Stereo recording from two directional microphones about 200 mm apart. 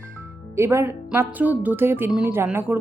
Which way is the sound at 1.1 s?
10° right (ahead or behind).